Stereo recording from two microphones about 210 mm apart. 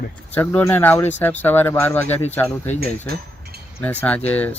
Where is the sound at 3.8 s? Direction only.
5° left (ahead or behind).